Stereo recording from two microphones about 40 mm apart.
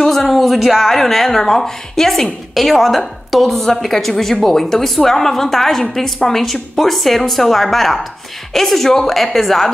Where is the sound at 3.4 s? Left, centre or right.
Centre.